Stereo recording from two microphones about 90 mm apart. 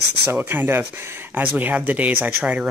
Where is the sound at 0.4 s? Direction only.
20° right (ahead or behind).